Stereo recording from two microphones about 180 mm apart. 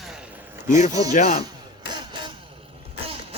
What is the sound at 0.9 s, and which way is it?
Speech, 20° right (ahead or behind).